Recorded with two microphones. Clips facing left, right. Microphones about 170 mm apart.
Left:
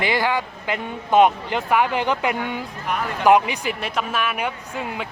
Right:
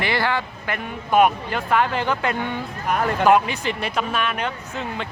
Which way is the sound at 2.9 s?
45° right (ahead or behind).